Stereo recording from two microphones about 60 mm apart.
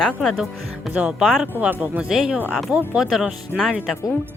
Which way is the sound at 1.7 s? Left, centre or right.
Right.